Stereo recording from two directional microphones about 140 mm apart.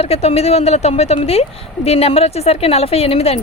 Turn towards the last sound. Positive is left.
turn(degrees=45)  # may be behind; listen again after turning